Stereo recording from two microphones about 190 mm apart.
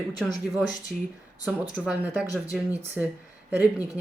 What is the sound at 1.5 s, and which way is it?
Speech, 5° right (ahead or behind).